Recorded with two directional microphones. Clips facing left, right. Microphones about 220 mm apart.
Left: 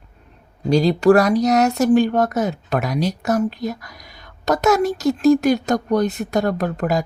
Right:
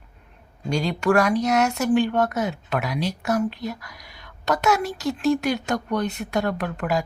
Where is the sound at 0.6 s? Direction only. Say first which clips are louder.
Left 8 dB; 35° left (ahead or behind).